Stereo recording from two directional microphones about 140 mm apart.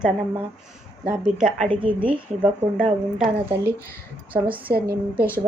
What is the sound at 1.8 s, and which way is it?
Speech, 35° right (ahead or behind).